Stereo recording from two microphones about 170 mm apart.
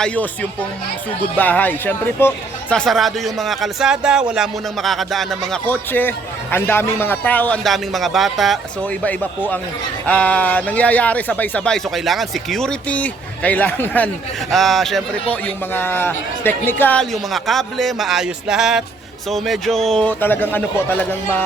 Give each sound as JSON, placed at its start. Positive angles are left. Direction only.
{"t": 1.4, "sound": "speech", "side_deg": 10}
{"t": 15.7, "sound": "speech", "side_deg": 10}